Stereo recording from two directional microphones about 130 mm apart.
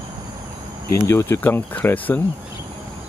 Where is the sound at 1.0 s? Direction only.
20° left (ahead or behind).